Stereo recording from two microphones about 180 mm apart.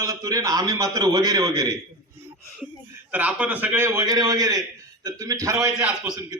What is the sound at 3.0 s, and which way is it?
A man's voice, 10° right (ahead or behind).